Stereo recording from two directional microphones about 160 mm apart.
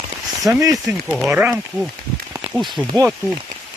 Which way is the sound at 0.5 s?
20° right (ahead or behind).